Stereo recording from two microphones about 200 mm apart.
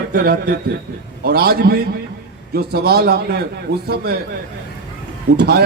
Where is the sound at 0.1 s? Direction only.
55° right (ahead or behind).